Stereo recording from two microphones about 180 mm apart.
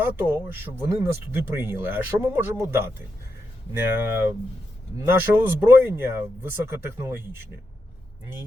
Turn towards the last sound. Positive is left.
turn(degrees=-15)  # may be behind; listen again after turning